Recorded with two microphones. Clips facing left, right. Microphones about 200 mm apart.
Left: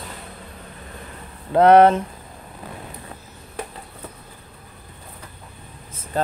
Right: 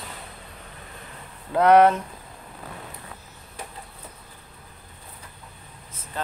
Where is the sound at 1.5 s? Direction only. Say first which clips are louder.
Left 4 dB; 30° left (ahead or behind).